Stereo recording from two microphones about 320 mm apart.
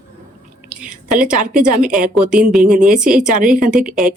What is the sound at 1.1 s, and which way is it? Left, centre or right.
A woman's voice, centre.